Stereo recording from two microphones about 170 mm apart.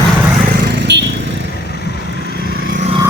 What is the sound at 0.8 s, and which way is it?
Vehicle, 90° right.